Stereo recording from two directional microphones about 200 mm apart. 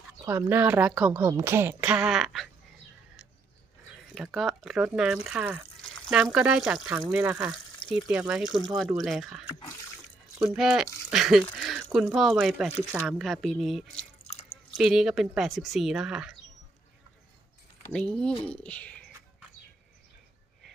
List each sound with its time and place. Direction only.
0.3 s a woman's voice: 10° right (ahead or behind)
4.1 s a woman's voice: centre (ahead or behind)
9.5 s water: 25° left (ahead or behind)
10.3 s speech: 5° right (ahead or behind)
14.3 s drip: 30° left (ahead or behind)
14.8 s speech: centre (ahead or behind)
17.9 s speech: 5° left (ahead or behind)